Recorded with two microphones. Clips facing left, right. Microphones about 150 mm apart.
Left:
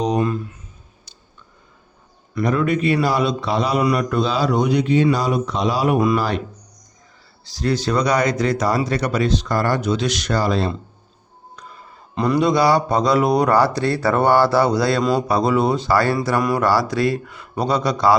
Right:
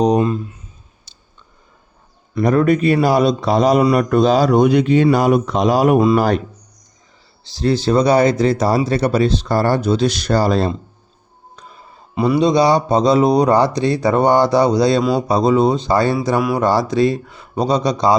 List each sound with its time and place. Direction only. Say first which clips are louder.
0.2 s speech: right 3 dB; 25° right (ahead or behind)
1.1 s clicking: left 2 dB; 30° right (ahead or behind)
2.4 s a man's voice: right 5 dB; 40° right (ahead or behind)
7.4 s speech: right 4 dB; 30° right (ahead or behind)
12.1 s a man's voice: right 3 dB; 10° right (ahead or behind)
12.4 s speech: right 2 dB; 20° right (ahead or behind)